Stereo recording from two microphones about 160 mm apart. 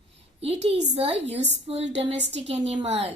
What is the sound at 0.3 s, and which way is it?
A woman's voice, 40° right (ahead or behind).